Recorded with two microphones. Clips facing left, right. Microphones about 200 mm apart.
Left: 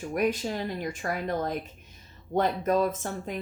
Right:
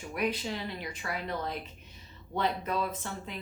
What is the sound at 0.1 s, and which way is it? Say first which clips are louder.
Speech: left 5 dB; 45° left (ahead or behind).